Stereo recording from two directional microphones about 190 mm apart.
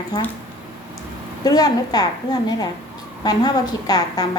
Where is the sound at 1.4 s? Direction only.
20° left (ahead or behind).